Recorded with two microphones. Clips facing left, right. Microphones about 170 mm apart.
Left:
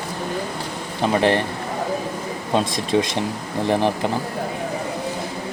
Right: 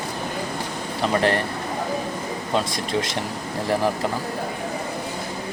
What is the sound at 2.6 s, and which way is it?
Speech, 20° left (ahead or behind).